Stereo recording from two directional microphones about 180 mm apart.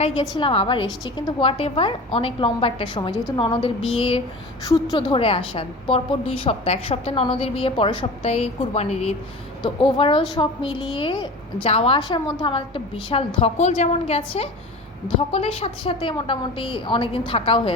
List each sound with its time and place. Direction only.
0.0 s a woman's voice: 30° left (ahead or behind)